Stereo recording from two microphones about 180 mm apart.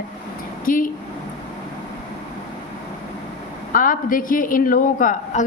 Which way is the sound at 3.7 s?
50° left (ahead or behind).